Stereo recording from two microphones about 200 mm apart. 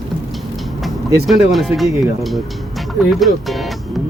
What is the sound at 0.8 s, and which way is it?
Speech, centre (ahead or behind).